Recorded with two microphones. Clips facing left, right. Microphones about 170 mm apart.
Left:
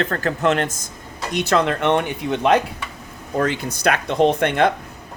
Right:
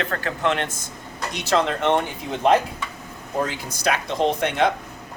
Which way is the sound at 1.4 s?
55° left (ahead or behind).